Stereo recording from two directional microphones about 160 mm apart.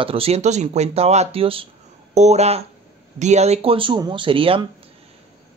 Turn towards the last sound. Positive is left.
turn(degrees=-35)  # may be behind; listen again after turning